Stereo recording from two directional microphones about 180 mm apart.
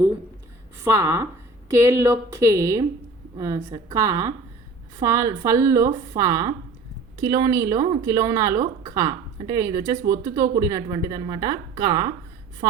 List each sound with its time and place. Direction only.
0.9 s a woman's voice: 20° right (ahead or behind)